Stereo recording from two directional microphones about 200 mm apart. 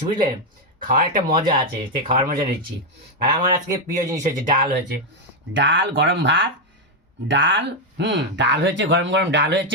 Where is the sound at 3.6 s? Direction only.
15° right (ahead or behind).